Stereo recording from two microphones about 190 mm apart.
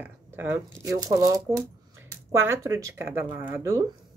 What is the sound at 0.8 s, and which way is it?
Speech, 20° right (ahead or behind).